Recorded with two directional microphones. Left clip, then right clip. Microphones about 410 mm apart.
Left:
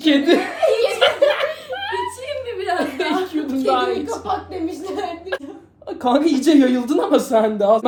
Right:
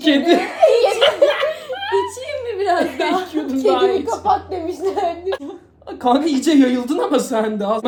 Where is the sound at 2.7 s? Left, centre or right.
Centre.